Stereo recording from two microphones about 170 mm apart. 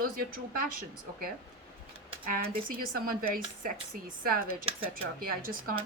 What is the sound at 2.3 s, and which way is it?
Speech, 55° right (ahead or behind).